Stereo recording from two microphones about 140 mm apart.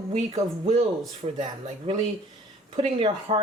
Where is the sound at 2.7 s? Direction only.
40° right (ahead or behind).